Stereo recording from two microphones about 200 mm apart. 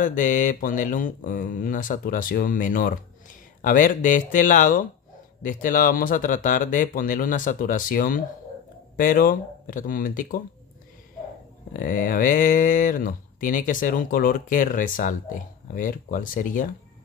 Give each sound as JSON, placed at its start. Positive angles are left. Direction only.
{"t": 0.0, "sound": "speech", "side_deg": 40}
{"t": 11.7, "sound": "speech", "side_deg": 45}